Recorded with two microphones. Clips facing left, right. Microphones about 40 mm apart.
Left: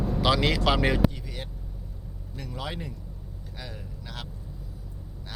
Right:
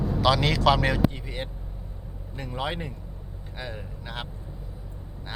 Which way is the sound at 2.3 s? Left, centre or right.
Right.